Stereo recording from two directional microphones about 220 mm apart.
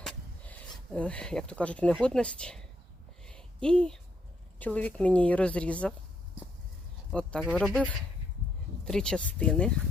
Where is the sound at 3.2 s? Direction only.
5° left (ahead or behind).